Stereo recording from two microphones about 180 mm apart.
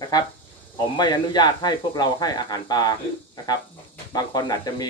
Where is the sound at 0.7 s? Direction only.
25° left (ahead or behind).